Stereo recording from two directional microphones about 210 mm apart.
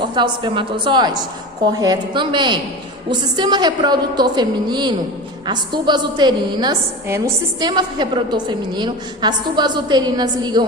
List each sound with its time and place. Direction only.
0.2 s a woman's voice: 20° right (ahead or behind)